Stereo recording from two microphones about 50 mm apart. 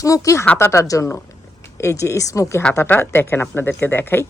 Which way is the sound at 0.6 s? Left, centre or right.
Left.